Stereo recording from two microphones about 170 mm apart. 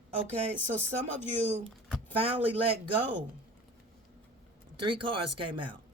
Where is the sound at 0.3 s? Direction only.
40° right (ahead or behind).